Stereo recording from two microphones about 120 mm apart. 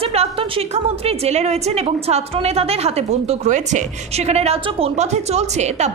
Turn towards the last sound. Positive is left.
turn(degrees=-70)  # may be behind; listen again after turning